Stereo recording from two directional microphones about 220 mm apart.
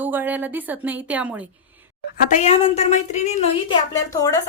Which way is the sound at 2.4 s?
30° left (ahead or behind).